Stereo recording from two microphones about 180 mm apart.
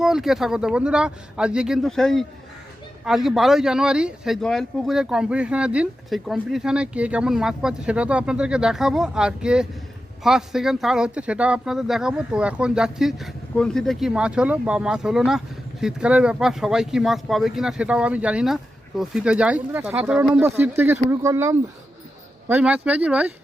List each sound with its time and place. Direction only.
0.0 s speech: centre (ahead or behind)